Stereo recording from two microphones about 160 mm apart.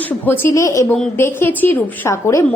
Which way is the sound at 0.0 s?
10° left (ahead or behind).